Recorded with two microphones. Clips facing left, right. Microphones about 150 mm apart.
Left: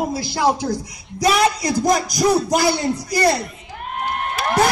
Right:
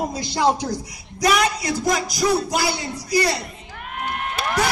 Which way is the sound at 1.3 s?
35° left (ahead or behind).